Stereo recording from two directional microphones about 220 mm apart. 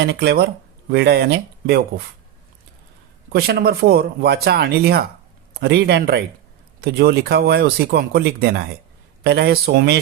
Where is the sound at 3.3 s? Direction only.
45° right (ahead or behind).